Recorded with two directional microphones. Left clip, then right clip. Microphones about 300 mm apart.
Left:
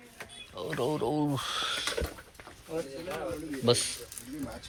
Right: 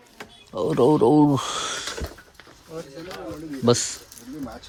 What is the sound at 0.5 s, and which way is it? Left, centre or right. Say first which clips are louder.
Speech: right 13 dB; right.